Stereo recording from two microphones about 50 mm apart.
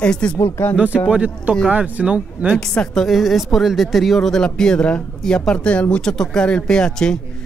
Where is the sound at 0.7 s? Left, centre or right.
Right.